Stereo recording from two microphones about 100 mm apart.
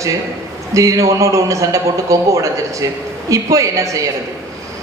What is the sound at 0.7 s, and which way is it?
A man's voice, 35° right (ahead or behind).